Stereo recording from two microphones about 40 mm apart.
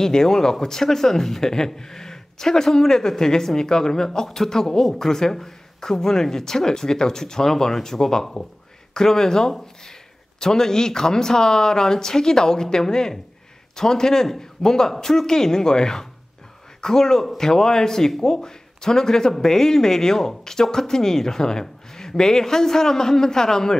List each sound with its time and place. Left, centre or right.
0.0 s speech: centre